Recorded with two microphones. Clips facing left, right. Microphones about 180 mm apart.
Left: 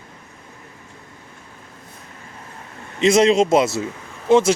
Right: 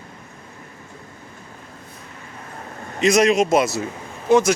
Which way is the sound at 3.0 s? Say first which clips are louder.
Left 2 dB; 25° left (ahead or behind).